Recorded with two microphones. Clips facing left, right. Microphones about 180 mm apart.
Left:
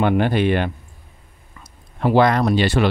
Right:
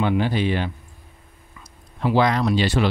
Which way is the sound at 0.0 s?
60° left (ahead or behind).